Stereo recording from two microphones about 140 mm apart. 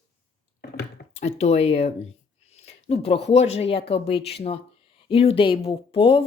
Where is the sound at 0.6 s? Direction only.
90° left.